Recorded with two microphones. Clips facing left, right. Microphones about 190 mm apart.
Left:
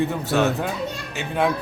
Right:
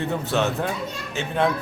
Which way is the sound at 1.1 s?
5° left (ahead or behind).